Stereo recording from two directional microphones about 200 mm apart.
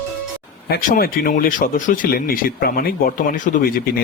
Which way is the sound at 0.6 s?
50° left (ahead or behind).